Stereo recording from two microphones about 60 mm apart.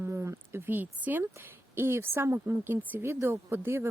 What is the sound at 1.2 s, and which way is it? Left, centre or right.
Speech, right.